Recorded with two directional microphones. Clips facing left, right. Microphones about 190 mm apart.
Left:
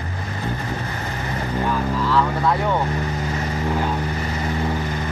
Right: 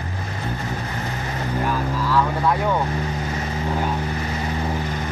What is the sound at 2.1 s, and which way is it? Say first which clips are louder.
Speech: even; 10° right (ahead or behind).